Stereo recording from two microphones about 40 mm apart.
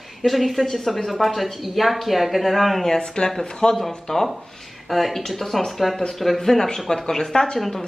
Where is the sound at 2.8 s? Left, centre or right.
Centre.